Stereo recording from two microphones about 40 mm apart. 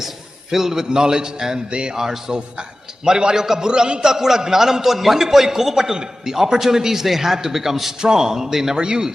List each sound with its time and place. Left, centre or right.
0.5 s a man's voice: centre